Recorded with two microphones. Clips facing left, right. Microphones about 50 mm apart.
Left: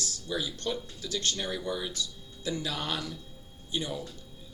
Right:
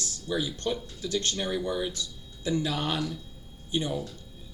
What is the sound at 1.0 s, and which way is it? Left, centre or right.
Speech, right.